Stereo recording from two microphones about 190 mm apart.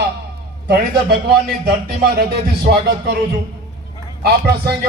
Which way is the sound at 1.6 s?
55° right (ahead or behind).